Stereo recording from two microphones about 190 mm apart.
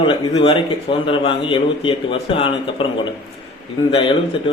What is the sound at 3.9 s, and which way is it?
Speech, 30° left (ahead or behind).